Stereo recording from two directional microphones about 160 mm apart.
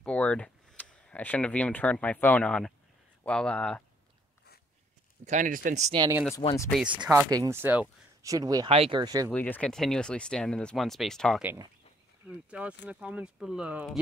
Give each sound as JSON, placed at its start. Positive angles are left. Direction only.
{"t": 0.0, "sound": "speech", "side_deg": 5}
{"t": 5.2, "sound": "speech", "side_deg": -50}
{"t": 6.4, "sound": "speech", "side_deg": 25}
{"t": 6.9, "sound": "speech", "side_deg": -30}
{"t": 8.6, "sound": "speech", "side_deg": -35}
{"t": 9.3, "sound": "speech", "side_deg": 10}
{"t": 12.3, "sound": "speech", "side_deg": -10}